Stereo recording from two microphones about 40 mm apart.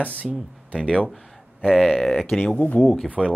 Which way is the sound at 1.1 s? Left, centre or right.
Centre.